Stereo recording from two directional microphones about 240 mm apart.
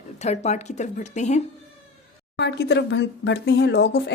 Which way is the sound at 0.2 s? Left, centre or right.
Left.